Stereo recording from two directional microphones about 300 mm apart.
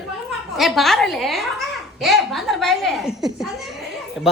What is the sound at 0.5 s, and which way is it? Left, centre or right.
A woman's voice, centre.